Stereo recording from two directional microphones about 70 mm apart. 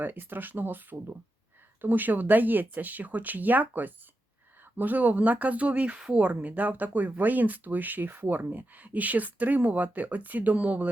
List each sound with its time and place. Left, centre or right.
0.0 s speech: right